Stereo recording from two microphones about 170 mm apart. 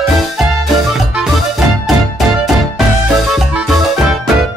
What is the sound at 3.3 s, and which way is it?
Music, 5° right (ahead or behind).